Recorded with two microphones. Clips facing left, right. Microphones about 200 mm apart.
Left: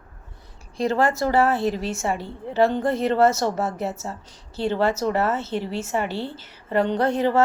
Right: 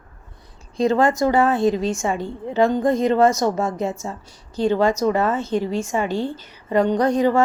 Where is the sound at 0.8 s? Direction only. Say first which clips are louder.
Right 4 dB; 20° right (ahead or behind).